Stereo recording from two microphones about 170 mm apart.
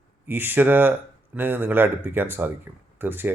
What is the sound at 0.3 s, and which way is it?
Speech, 10° right (ahead or behind).